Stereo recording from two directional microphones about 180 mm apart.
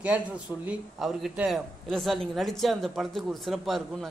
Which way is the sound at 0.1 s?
10° right (ahead or behind).